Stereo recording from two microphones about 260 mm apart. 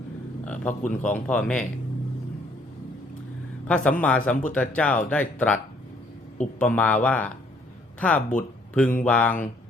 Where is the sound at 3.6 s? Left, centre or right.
Centre.